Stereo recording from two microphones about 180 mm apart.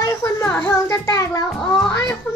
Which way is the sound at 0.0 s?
15° left (ahead or behind).